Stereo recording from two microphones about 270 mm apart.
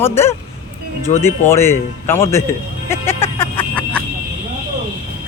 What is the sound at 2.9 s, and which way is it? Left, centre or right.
Music, centre.